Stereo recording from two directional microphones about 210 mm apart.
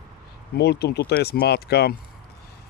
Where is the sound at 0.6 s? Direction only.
50° left (ahead or behind).